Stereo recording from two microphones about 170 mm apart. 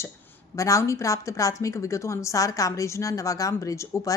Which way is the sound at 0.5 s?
20° left (ahead or behind).